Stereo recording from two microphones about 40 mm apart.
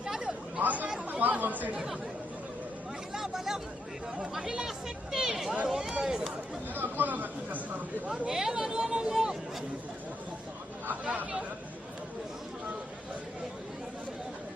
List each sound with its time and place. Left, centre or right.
0.0 s chatter: centre
0.6 s speech: right
3.2 s speech: centre
6.7 s speech: right
8.3 s speech: centre